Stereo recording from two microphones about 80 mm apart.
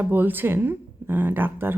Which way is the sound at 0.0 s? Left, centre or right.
Right.